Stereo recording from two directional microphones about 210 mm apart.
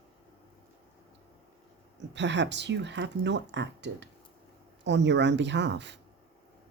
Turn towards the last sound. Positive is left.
turn(degrees=-55)  # may be behind; listen again after turning